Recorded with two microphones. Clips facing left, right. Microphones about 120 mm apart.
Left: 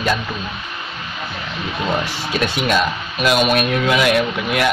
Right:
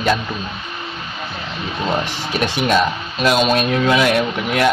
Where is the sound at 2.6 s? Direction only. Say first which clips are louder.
Right 2 dB; 25° right (ahead or behind).